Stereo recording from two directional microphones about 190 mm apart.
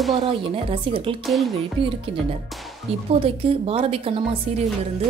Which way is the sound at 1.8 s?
25° right (ahead or behind).